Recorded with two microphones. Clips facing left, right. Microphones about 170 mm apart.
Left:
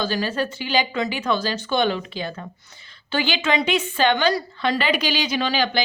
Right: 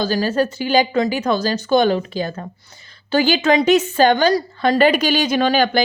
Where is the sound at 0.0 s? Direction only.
40° right (ahead or behind).